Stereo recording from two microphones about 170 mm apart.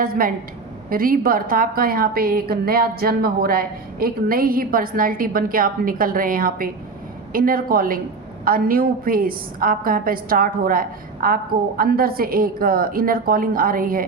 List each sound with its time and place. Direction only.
0.0 s a woman's voice: 55° right (ahead or behind)